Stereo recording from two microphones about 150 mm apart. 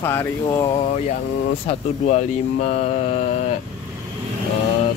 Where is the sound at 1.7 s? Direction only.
50° left (ahead or behind).